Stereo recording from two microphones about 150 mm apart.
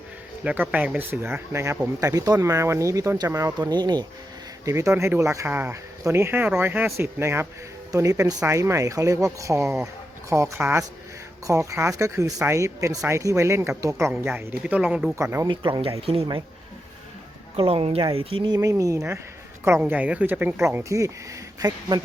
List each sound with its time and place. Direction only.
0.4 s speech: 10° right (ahead or behind)
15.1 s speech: 20° right (ahead or behind)
15.4 s speech: 30° right (ahead or behind)
17.6 s speech: 40° right (ahead or behind)